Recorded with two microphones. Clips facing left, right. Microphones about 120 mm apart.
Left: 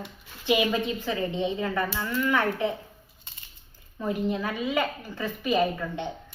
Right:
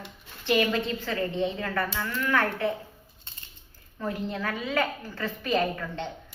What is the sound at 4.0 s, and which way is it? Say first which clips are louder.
A woman's voice: left 4 dB; 15° left (ahead or behind).